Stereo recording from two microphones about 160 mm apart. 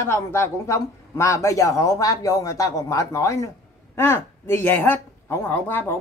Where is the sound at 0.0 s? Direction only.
15° left (ahead or behind).